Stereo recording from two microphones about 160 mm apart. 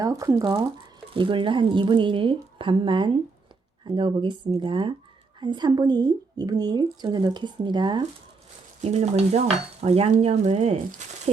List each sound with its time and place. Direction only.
0.0 s a woman's voice: 20° right (ahead or behind)
8.8 s a woman's voice: 40° right (ahead or behind)
11.0 s a sound: 50° right (ahead or behind)